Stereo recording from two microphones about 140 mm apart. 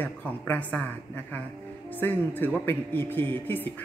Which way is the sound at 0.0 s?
10° left (ahead or behind).